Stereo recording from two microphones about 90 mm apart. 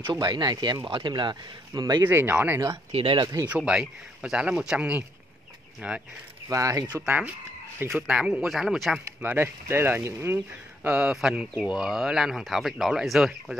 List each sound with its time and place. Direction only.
0.0 s speech: 55° right (ahead or behind)
0.8 s speech: 65° right (ahead or behind)
1.7 s speech: 45° right (ahead or behind)
2.0 s speech: 20° right (ahead or behind)
3.0 s speech: 90° right
3.4 s speech: 10° right (ahead or behind)
6.5 s speech: 35° right (ahead or behind)
7.1 s speech: 15° right (ahead or behind); by 9.0 s centre (ahead or behind)
9.2 s speech: 25° right (ahead or behind)
10.9 s speech: 10° right (ahead or behind)